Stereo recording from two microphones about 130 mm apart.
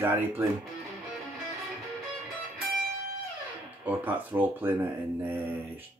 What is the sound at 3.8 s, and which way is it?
Speech, 15° right (ahead or behind).